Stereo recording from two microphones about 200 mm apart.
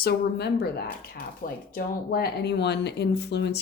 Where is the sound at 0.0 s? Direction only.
55° left (ahead or behind).